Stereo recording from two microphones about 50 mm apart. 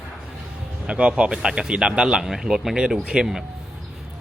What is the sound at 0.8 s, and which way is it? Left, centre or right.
Speech, right.